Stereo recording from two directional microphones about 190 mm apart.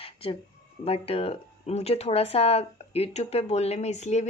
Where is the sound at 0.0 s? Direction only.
30° left (ahead or behind).